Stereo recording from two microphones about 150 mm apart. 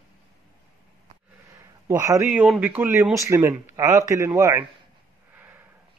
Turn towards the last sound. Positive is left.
turn(degrees=-10)  # may be behind; listen again after turning